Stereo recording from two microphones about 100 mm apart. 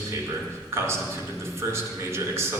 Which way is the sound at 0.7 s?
25° right (ahead or behind).